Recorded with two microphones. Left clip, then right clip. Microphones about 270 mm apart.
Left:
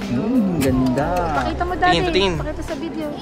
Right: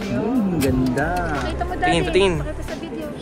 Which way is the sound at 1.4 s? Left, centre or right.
Left.